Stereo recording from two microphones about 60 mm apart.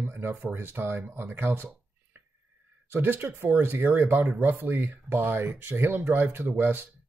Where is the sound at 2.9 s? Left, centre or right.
Right.